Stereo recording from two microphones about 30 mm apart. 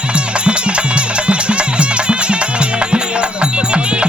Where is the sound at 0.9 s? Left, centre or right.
Right.